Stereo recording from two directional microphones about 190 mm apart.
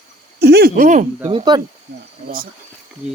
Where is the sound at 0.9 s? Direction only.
40° right (ahead or behind).